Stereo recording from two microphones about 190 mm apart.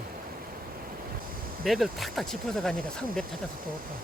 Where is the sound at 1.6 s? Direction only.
Centre (ahead or behind).